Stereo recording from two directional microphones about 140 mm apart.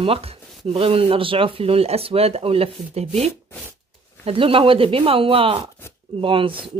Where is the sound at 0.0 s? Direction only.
45° right (ahead or behind).